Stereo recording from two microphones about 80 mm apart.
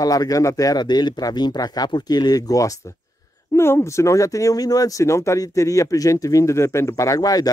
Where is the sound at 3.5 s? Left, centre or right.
Left.